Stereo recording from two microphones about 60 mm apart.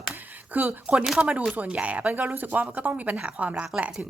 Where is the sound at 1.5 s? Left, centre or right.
Centre.